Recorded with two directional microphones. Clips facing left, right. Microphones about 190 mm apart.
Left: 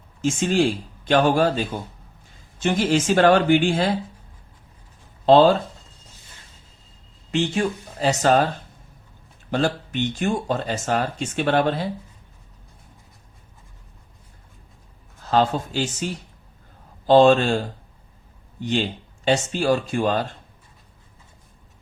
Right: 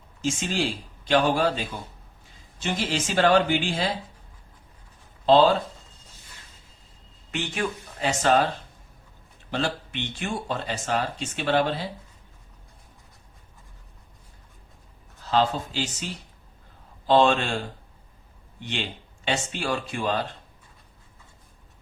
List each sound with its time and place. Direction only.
0.2 s speech: 50° left (ahead or behind)
5.2 s speech: 50° left (ahead or behind)
7.3 s speech: 30° left (ahead or behind)
9.5 s speech: 45° left (ahead or behind)
15.2 s speech: 50° left (ahead or behind)
17.1 s speech: 40° left (ahead or behind)